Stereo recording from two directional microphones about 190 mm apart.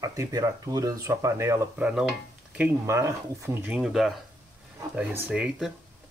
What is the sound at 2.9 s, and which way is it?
Speech, 15° right (ahead or behind).